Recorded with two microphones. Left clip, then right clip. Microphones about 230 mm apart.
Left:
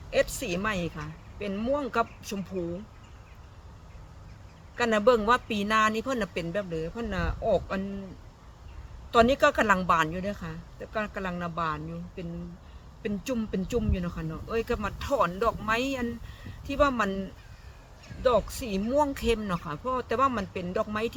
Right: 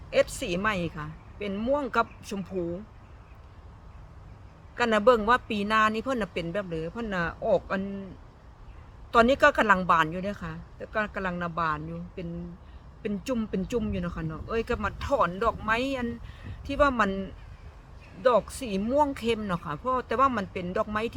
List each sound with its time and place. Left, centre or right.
0.1 s speech: centre
4.8 s speech: centre
9.1 s speech: centre